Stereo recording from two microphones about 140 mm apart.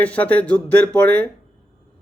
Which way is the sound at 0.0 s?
10° left (ahead or behind).